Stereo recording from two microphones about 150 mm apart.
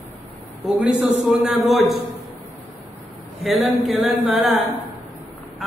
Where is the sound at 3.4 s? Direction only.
Centre (ahead or behind).